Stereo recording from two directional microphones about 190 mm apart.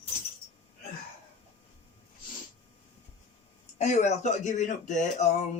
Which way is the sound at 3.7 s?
35° left (ahead or behind).